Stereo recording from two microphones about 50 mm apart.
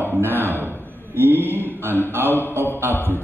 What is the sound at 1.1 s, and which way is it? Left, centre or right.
Speech, right.